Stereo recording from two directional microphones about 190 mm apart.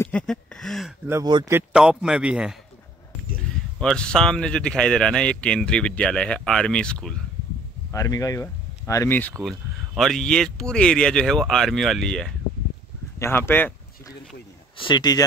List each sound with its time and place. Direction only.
0.0 s speech: 5° left (ahead or behind)
1.0 s speech: 20° right (ahead or behind)
1.7 s speech: 5° right (ahead or behind)
7.9 s speech: 15° left (ahead or behind)
9.4 s speech: centre (ahead or behind)
13.2 s a sound: 10° left (ahead or behind)
14.8 s speech: 25° left (ahead or behind)